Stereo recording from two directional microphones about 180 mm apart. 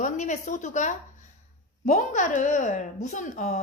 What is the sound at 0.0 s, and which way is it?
A woman's voice, 40° left (ahead or behind).